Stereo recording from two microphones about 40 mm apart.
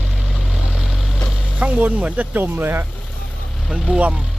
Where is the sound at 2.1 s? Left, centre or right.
Right.